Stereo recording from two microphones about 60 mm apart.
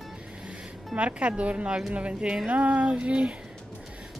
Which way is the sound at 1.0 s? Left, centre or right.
Centre.